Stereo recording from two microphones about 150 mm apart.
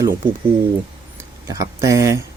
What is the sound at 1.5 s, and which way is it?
Speech, 20° right (ahead or behind).